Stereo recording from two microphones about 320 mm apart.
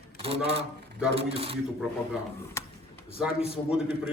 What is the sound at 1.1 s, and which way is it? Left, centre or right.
Speech, centre.